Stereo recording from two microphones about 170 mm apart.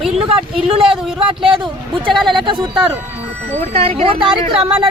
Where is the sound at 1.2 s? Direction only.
30° right (ahead or behind).